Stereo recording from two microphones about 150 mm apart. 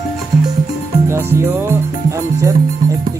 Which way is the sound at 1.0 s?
15° right (ahead or behind).